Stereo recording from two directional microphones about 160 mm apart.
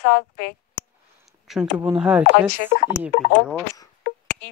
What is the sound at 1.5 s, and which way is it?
Speech, centre (ahead or behind).